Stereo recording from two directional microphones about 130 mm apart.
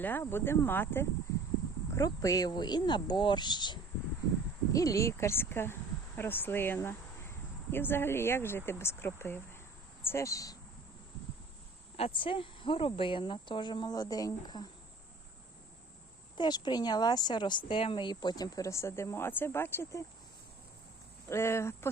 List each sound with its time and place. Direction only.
0.0 s speech: 15° left (ahead or behind)
1.9 s speech: 25° left (ahead or behind)
11.9 s speech: 45° left (ahead or behind); by 14.7 s 30° left (ahead or behind)
16.4 s speech: 35° left (ahead or behind)
21.2 s speech: 20° left (ahead or behind)